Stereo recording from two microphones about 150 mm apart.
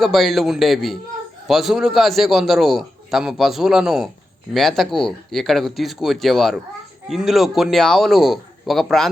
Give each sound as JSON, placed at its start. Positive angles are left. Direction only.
{"t": 0.0, "sound": "a man's voice", "side_deg": 0}